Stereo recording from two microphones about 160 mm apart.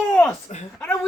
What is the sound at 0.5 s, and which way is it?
Speech, 45° left (ahead or behind).